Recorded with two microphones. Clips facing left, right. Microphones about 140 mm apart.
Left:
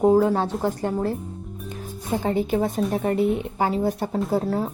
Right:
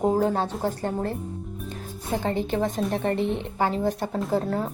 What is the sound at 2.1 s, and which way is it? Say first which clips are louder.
A woman's voice: left 3 dB; 10° left (ahead or behind).